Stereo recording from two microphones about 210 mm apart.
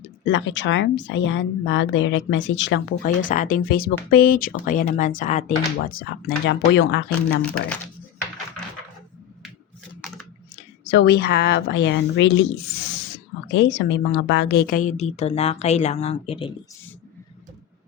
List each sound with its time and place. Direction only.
0.3 s a woman's voice: 60° left (ahead or behind)
3.0 s speech: 40° left (ahead or behind)
6.0 s speech: 50° left (ahead or behind)
7.4 s speech: 5° left (ahead or behind)
10.8 s a woman's voice: 50° left (ahead or behind)
13.5 s speech: 60° left (ahead or behind); by 16.6 s 25° left (ahead or behind)